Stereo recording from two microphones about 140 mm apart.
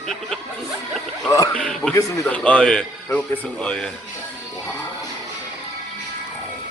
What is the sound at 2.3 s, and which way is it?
A man's voice, 10° left (ahead or behind).